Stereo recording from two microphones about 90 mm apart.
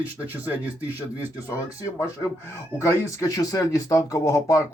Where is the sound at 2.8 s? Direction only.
35° left (ahead or behind).